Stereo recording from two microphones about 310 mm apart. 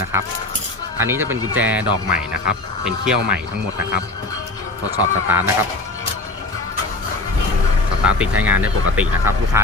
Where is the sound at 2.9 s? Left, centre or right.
Centre.